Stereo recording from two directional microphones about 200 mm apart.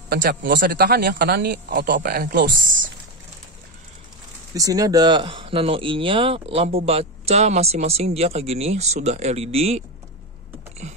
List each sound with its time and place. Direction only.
0.1 s speech: 55° right (ahead or behind)
4.6 s speech: 15° right (ahead or behind)